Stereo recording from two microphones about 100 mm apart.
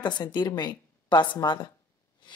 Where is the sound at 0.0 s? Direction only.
45° left (ahead or behind).